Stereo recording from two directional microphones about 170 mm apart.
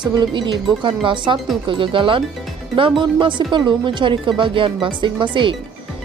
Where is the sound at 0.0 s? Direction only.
25° right (ahead or behind).